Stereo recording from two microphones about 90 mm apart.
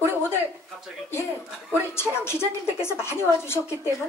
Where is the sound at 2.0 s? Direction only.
30° left (ahead or behind).